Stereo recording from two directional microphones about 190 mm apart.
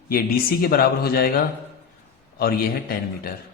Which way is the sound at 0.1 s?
50° left (ahead or behind).